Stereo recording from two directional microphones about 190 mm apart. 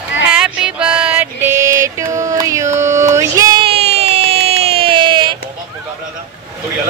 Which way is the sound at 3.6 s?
35° right (ahead or behind).